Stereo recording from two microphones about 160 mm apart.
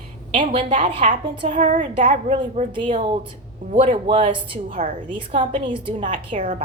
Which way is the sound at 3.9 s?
30° right (ahead or behind).